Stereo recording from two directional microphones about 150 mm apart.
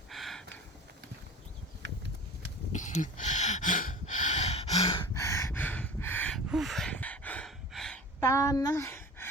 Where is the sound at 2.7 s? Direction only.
55° left (ahead or behind).